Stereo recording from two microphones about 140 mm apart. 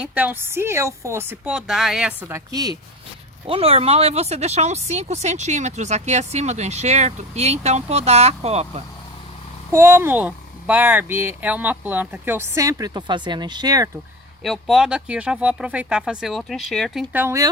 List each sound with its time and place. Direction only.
0.0 s speech: 10° right (ahead or behind)
1.5 s speech: centre (ahead or behind)
2.2 s speech: 25° right (ahead or behind)
3.4 s speech: 45° right (ahead or behind)
9.7 s speech: 20° right (ahead or behind)
14.4 s speech: centre (ahead or behind)
17.2 s speech: 20° right (ahead or behind)